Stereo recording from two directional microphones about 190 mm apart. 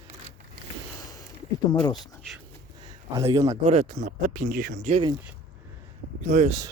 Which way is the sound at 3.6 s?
35° right (ahead or behind).